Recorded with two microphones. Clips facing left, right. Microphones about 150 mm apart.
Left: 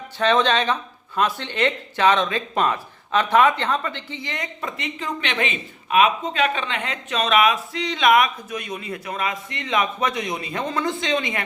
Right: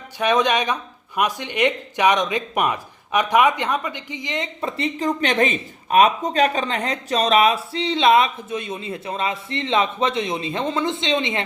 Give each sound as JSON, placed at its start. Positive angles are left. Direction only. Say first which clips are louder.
{"t": 0.2, "sound": "speech", "louder": "even", "side_deg": -15}
{"t": 4.6, "sound": "speech", "louder": "right 8 dB", "side_deg": -35}